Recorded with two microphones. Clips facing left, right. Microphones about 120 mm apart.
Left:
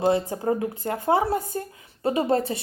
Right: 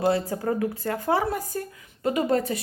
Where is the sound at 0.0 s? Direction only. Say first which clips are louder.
Left 1 dB; 20° left (ahead or behind).